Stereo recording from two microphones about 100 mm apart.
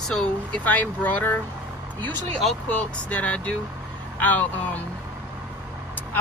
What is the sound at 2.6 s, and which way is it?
Speech, 15° left (ahead or behind).